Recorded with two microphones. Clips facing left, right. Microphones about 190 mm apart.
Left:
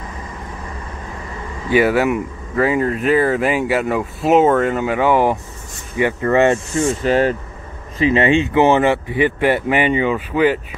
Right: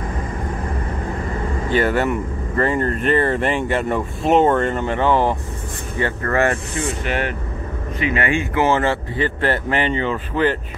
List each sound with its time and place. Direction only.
1.7 s speech: 10° left (ahead or behind)
6.9 s speech: 35° left (ahead or behind); by 10.6 s 10° left (ahead or behind)